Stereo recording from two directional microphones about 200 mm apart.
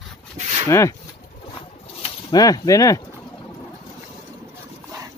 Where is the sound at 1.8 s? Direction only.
30° left (ahead or behind).